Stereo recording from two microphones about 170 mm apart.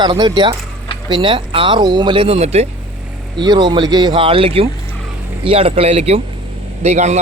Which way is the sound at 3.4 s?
25° right (ahead or behind).